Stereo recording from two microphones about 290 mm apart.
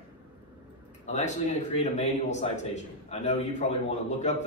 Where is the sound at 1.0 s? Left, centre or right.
Left.